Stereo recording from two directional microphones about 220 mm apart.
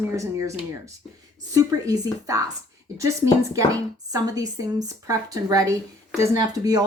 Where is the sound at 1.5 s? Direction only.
15° right (ahead or behind).